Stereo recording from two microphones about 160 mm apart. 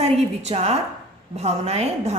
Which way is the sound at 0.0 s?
40° right (ahead or behind).